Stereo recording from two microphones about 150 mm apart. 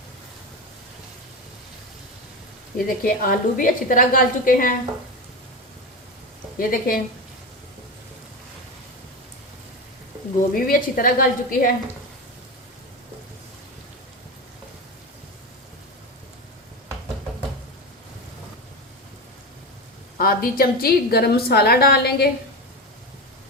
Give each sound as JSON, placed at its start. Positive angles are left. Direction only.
{"t": 2.7, "sound": "a woman's voice", "side_deg": 70}
{"t": 6.6, "sound": "a woman's voice", "side_deg": 70}
{"t": 10.5, "sound": "a woman's voice", "side_deg": 70}
{"t": 20.1, "sound": "a woman's voice", "side_deg": 80}